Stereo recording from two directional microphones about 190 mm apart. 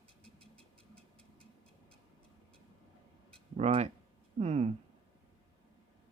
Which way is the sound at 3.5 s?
35° right (ahead or behind).